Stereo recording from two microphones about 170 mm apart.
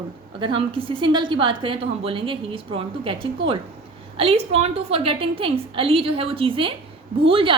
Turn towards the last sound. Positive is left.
turn(degrees=-30)  # may be behind; listen again after turning